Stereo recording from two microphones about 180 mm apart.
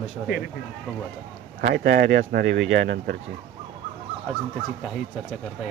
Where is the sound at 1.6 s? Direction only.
65° right (ahead or behind).